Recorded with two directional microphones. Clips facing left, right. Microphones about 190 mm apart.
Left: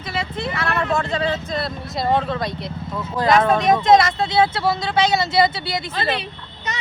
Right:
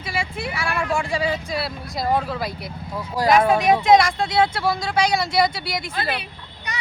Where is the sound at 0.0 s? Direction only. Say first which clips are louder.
Left 2 dB; 10° right (ahead or behind).